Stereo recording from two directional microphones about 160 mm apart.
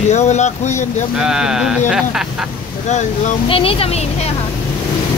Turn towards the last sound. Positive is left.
turn(degrees=40)  # may be behind; listen again after turning